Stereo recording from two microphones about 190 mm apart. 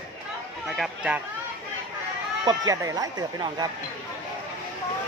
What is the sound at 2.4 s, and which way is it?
Speech, 20° right (ahead or behind).